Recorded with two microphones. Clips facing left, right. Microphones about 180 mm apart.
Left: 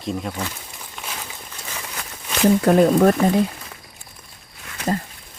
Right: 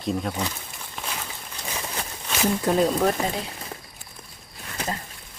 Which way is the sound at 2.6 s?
60° left (ahead or behind).